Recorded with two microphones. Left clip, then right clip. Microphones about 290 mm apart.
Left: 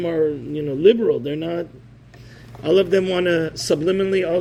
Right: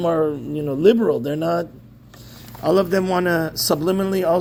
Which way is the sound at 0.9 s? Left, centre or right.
Right.